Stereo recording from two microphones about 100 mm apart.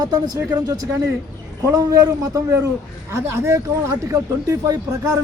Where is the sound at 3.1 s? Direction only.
25° right (ahead or behind).